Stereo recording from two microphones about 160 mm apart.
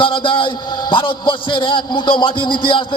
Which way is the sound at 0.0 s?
30° left (ahead or behind).